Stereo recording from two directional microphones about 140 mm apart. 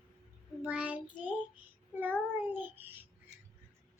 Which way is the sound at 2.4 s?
15° right (ahead or behind).